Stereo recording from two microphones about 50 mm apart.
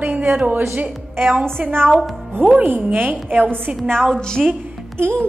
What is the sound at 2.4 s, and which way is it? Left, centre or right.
Speech, centre.